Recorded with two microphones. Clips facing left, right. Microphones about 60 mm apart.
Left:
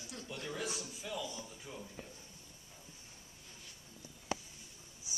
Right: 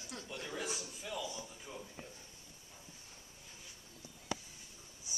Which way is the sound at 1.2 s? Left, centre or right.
Right.